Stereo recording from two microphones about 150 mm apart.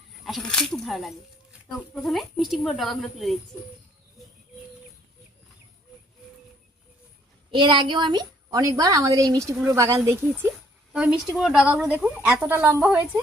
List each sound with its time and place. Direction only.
0.3 s speech: centre (ahead or behind)
7.5 s a woman's voice: 30° right (ahead or behind)
10.9 s a woman's voice: 5° right (ahead or behind)